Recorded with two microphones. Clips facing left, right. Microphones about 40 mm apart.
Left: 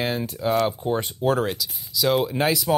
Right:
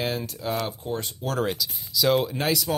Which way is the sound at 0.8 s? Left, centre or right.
Left.